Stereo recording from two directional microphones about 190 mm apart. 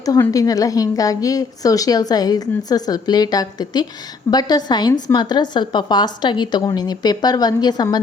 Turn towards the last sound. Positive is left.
turn(degrees=20)  # may be behind; listen again after turning